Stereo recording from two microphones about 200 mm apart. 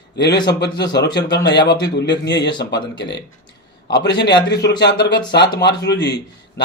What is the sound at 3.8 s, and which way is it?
A man's voice, 60° left (ahead or behind).